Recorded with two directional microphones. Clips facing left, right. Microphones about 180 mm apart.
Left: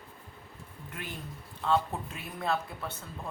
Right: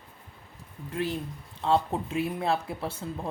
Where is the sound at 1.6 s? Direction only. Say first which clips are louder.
Right 3 dB; 30° right (ahead or behind).